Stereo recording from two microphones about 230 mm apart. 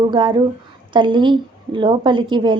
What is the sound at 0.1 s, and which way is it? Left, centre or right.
Speech, right.